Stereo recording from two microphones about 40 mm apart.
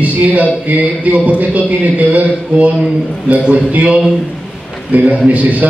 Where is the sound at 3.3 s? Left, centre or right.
Right.